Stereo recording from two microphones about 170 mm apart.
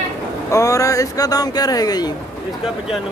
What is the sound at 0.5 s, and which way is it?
Speech, 20° left (ahead or behind).